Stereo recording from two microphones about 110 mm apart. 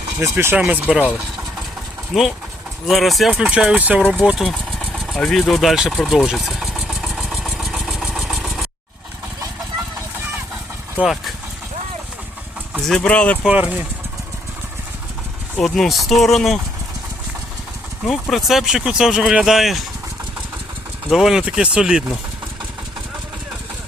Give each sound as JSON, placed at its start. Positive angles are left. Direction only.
{"t": 0.2, "sound": "speech", "side_deg": -25}
{"t": 0.5, "sound": "speech", "side_deg": -10}
{"t": 2.1, "sound": "speech", "side_deg": 0}
{"t": 4.4, "sound": "vehicle", "side_deg": 5}
{"t": 11.0, "sound": "speech", "side_deg": 0}
{"t": 12.9, "sound": "speech", "side_deg": 10}
{"t": 13.4, "sound": "speech", "side_deg": -10}
{"t": 15.5, "sound": "speech", "side_deg": 5}
{"t": 18.0, "sound": "speech", "side_deg": 0}
{"t": 21.1, "sound": "speech", "side_deg": -5}